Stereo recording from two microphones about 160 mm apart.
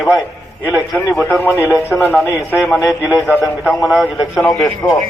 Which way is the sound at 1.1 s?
10° left (ahead or behind).